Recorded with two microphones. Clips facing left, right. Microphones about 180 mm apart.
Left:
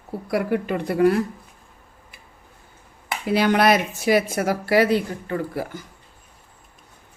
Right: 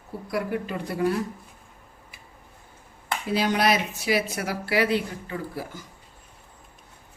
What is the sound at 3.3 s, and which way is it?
A woman's voice, 65° left (ahead or behind).